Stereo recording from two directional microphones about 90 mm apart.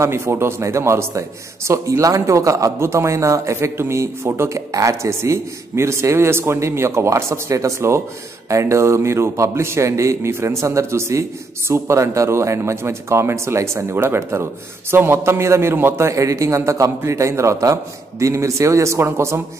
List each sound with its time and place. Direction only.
0.0 s a man's voice: 30° right (ahead or behind)